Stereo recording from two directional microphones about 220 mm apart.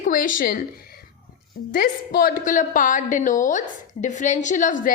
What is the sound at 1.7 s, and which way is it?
A woman's voice, 40° left (ahead or behind).